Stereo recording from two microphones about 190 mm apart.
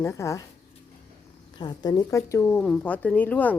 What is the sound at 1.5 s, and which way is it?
A woman's voice, 20° left (ahead or behind).